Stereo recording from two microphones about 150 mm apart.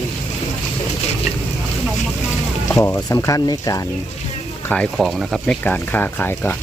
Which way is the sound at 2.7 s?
20° left (ahead or behind).